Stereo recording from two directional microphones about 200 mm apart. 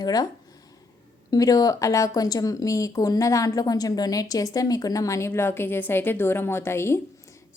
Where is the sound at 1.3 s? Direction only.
20° left (ahead or behind).